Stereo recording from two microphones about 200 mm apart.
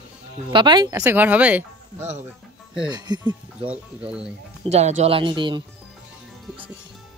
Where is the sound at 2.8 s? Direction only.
20° right (ahead or behind).